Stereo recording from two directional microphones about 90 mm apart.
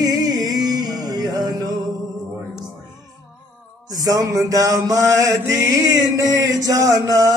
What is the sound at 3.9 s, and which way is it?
Mantra, 40° right (ahead or behind).